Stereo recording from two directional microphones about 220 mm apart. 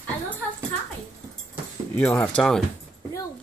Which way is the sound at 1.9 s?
5° left (ahead or behind).